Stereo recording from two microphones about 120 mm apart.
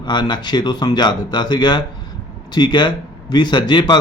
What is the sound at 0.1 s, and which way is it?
Speech, 40° left (ahead or behind).